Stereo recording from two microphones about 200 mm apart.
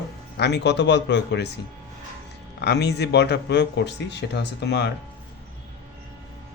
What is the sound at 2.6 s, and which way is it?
Speech, 55° left (ahead or behind).